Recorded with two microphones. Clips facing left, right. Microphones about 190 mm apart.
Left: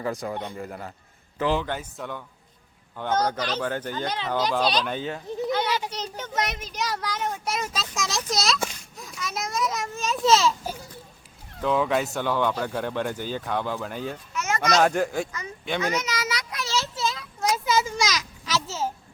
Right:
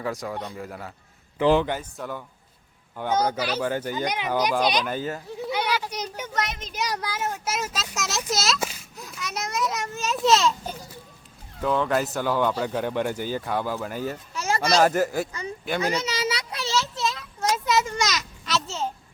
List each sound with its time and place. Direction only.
0.0 s a child's voice: centre (ahead or behind)
5.5 s children playing: 15° right (ahead or behind)
5.9 s a child's voice: 10° right (ahead or behind)
14.3 s a sound: 30° right (ahead or behind)
14.8 s a child's voice: 5° right (ahead or behind)
15.3 s speech: 30° right (ahead or behind)
15.8 s children playing: 30° right (ahead or behind)
17.0 s a sound: centre (ahead or behind)